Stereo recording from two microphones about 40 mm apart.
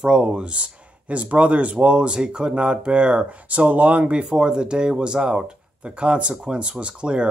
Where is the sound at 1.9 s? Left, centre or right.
Right.